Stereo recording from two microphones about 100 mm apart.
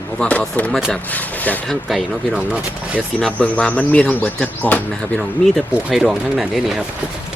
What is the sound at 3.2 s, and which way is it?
Speech, 10° left (ahead or behind).